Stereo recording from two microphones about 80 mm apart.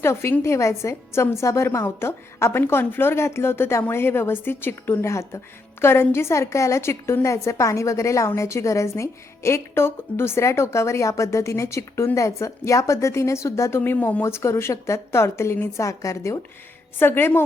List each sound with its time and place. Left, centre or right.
0.0 s a woman's voice: left
17.0 s a woman's voice: left